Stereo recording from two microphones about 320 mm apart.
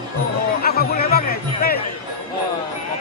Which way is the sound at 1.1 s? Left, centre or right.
Left.